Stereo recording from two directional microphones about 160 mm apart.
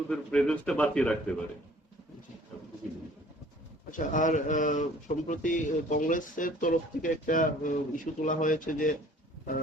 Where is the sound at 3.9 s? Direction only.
55° left (ahead or behind).